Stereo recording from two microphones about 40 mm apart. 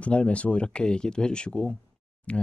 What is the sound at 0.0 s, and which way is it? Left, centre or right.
Speech, left.